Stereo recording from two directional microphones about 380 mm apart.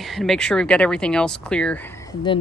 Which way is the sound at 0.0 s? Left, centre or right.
Centre.